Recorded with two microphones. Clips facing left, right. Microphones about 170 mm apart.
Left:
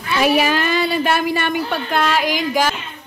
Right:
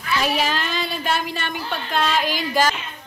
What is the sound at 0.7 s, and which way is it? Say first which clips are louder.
Speech: left 6 dB; 65° left (ahead or behind).